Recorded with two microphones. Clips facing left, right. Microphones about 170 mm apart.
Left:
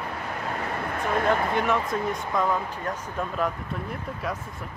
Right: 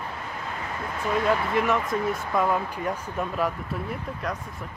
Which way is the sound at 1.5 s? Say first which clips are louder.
Right 1 dB; centre (ahead or behind).